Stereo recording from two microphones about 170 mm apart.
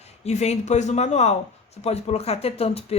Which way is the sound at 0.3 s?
40° left (ahead or behind).